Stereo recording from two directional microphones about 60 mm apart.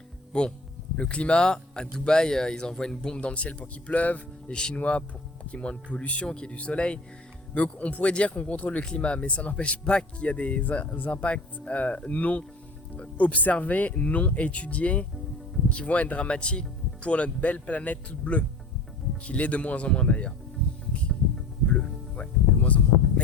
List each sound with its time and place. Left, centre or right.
0.3 s speech: centre
3.2 s speech: left
21.7 s music: centre